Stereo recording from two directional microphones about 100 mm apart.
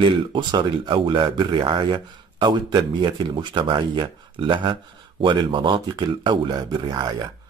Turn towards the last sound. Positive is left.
turn(degrees=-45)  # may be behind; listen again after turning